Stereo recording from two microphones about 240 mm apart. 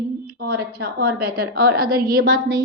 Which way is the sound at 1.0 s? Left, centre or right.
Right.